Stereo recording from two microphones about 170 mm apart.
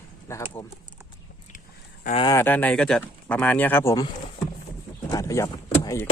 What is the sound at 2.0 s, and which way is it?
Speech, 40° left (ahead or behind).